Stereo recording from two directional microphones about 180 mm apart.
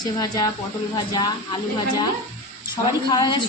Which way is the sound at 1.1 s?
20° left (ahead or behind).